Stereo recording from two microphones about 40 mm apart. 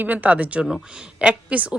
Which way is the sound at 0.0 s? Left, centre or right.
Right.